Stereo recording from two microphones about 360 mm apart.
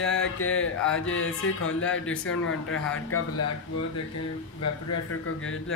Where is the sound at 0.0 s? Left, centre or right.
Left.